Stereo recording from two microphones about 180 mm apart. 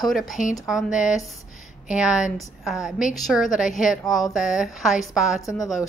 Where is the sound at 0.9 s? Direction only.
45° left (ahead or behind).